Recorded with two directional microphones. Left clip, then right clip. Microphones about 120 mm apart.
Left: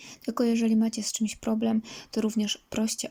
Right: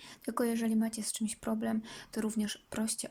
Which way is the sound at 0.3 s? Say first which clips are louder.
Left 6 dB; 10° left (ahead or behind).